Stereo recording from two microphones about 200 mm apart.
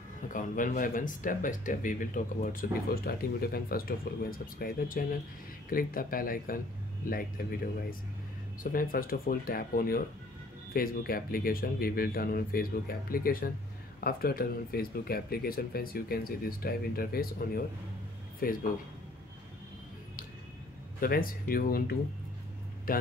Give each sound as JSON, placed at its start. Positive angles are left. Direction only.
{"t": 0.3, "sound": "speech", "side_deg": 40}
{"t": 8.7, "sound": "speech", "side_deg": 45}
{"t": 21.0, "sound": "speech", "side_deg": 45}